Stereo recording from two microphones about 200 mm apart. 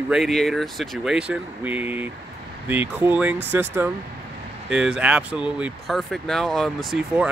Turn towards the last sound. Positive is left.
turn(degrees=0)  # may be behind; listen again after turning